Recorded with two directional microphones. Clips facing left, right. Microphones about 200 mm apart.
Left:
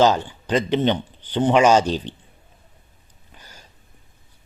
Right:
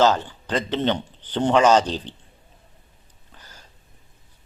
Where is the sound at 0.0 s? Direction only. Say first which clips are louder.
Left 1 dB; 15° left (ahead or behind).